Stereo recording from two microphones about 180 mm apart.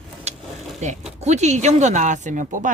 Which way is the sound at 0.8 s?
40° right (ahead or behind).